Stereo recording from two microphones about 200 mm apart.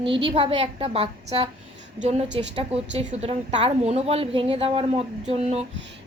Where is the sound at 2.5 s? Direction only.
30° right (ahead or behind).